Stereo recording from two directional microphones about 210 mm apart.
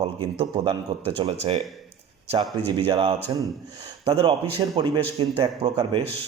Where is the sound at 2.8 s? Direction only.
25° right (ahead or behind).